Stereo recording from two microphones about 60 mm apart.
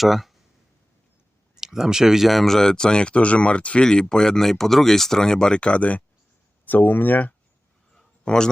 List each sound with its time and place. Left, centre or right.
0.0 s speech: centre
1.6 s speech: centre; by 7.3 s left
8.2 s speech: centre